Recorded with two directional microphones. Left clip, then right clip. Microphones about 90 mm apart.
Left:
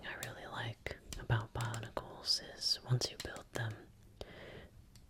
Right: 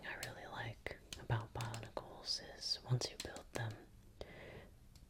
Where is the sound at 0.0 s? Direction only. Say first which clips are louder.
Left 2 dB; 15° left (ahead or behind).